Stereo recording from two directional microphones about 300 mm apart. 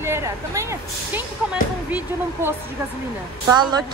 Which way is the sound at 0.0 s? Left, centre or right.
Centre.